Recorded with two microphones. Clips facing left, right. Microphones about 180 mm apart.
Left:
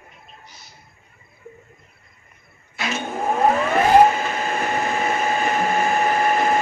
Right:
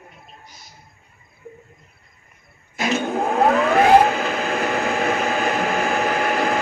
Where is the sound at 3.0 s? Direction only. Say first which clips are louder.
Even; 70° right (ahead or behind).